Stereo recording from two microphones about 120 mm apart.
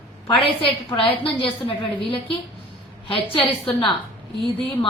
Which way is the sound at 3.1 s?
50° left (ahead or behind).